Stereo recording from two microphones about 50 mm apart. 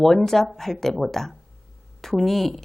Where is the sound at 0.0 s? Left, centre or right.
Centre.